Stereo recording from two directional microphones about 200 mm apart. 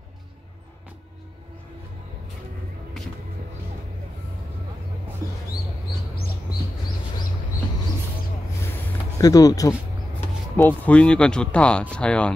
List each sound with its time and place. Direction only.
9.2 s speech: 20° left (ahead or behind)